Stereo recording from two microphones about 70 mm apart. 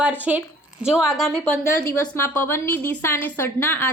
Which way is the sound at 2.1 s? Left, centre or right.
Left.